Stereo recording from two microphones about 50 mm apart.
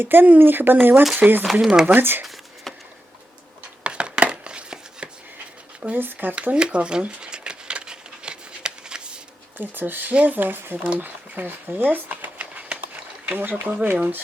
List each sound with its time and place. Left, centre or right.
0.0 s speech: right
1.6 s speech: centre
1.9 s speech: right
2.2 s a sound: centre
3.8 s chopping: right
6.0 s speech: right
6.4 s speech: right
7.2 s a sound: centre
9.6 s speech: right
12.1 s a sound: right
12.6 s run: right
13.2 s speech: right